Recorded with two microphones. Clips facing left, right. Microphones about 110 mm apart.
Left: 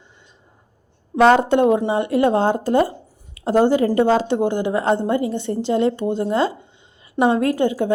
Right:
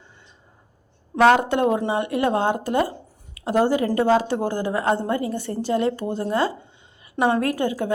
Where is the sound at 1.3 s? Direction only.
25° left (ahead or behind).